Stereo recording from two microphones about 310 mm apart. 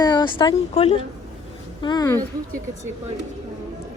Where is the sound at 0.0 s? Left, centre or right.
Centre.